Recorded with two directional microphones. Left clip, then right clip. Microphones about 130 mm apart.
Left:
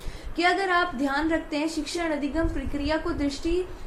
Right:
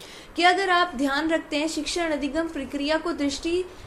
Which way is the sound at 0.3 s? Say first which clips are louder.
Right 3 dB; 45° right (ahead or behind).